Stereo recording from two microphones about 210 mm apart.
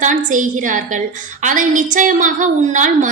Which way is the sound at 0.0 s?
35° right (ahead or behind).